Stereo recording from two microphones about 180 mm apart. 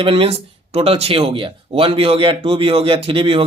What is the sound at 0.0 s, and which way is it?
Speech, 30° right (ahead or behind).